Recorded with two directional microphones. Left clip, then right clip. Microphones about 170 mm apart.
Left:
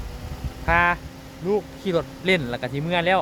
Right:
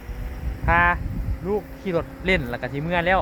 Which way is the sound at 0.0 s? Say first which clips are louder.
Left 1 dB; 35° left (ahead or behind).